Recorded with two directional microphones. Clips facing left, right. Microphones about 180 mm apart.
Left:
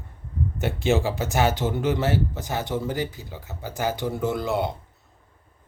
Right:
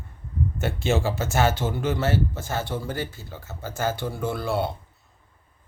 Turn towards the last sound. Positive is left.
turn(degrees=20)  # may be behind; listen again after turning